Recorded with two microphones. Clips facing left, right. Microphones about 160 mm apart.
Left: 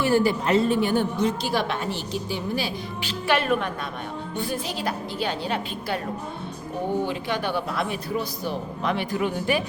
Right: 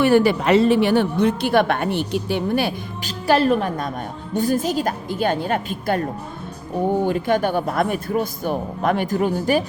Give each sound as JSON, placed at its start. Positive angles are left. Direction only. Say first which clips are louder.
{"t": 0.0, "sound": "a woman's voice", "louder": "right 5 dB", "side_deg": -70}
{"t": 3.2, "sound": "a woman's voice", "louder": "right 6 dB", "side_deg": -35}
{"t": 7.0, "sound": "a man's voice", "louder": "right 7 dB", "side_deg": -50}